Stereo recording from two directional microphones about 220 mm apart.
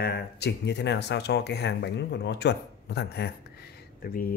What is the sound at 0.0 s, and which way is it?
Speech, 50° left (ahead or behind).